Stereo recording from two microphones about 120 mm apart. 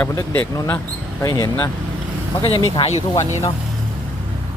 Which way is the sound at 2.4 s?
50° left (ahead or behind).